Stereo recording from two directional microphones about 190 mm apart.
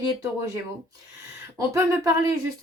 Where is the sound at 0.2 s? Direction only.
15° right (ahead or behind).